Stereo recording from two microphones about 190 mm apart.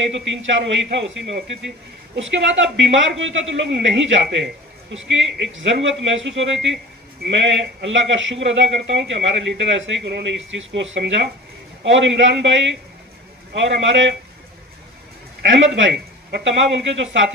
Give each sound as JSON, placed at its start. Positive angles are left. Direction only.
{"t": 0.1, "sound": "speech", "side_deg": -75}
{"t": 2.1, "sound": "speech", "side_deg": -80}
{"t": 15.4, "sound": "speech", "side_deg": -75}